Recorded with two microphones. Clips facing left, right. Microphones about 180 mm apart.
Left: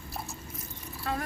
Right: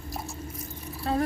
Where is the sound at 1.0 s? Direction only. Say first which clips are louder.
Right 7 dB; 30° right (ahead or behind).